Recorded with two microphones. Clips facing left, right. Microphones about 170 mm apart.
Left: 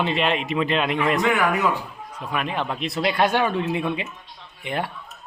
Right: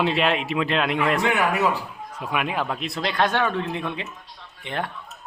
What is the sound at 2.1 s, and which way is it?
Speech, 10° right (ahead or behind).